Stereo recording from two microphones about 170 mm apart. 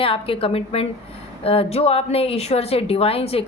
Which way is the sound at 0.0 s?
35° left (ahead or behind).